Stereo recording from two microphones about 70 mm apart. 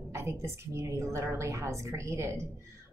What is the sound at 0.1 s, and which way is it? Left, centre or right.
A woman's voice, right.